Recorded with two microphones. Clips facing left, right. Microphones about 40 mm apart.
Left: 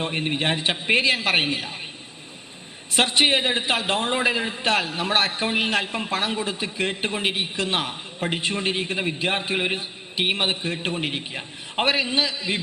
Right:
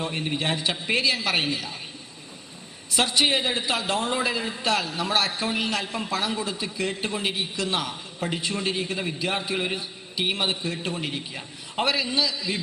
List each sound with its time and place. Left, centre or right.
0.0 s a man's voice: left
2.9 s a man's voice: left